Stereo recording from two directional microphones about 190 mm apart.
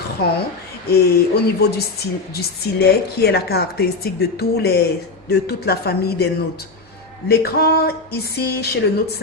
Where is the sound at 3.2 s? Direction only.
55° left (ahead or behind).